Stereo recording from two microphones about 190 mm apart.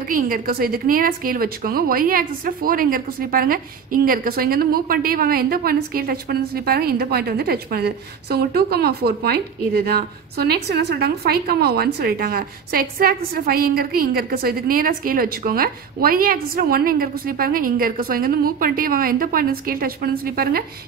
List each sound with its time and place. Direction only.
0.1 s a woman's voice: 50° right (ahead or behind)